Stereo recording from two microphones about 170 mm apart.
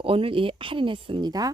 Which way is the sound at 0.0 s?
35° right (ahead or behind).